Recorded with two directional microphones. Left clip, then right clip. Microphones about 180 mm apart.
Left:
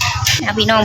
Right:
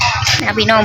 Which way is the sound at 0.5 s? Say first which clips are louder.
Right 2 dB; 5° left (ahead or behind).